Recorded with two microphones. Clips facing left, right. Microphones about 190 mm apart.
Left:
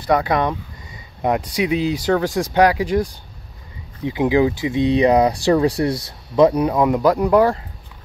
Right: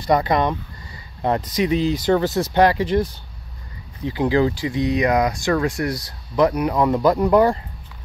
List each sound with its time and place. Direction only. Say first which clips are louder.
0.0 s speech: even; 5° left (ahead or behind); by 6.7 s 25° left (ahead or behind)
6.7 s speech: left 1 dB; 10° left (ahead or behind)